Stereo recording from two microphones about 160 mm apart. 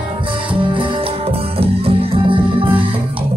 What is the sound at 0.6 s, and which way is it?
Music, 30° right (ahead or behind).